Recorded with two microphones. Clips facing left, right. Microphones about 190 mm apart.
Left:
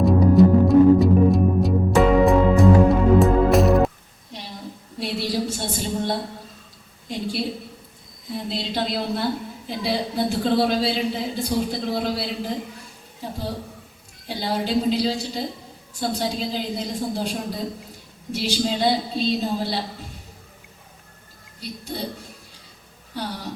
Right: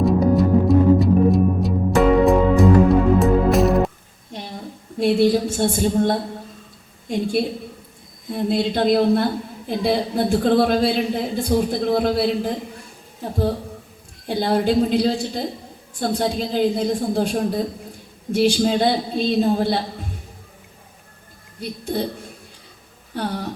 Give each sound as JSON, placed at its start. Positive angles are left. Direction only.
{"t": 0.0, "sound": "music", "side_deg": 0}
{"t": 4.3, "sound": "a sound", "side_deg": -50}
{"t": 4.9, "sound": "a woman's voice", "side_deg": -50}
{"t": 14.3, "sound": "a woman's voice", "side_deg": -55}
{"t": 21.6, "sound": "a woman's voice", "side_deg": -55}
{"t": 23.1, "sound": "a woman's voice", "side_deg": -55}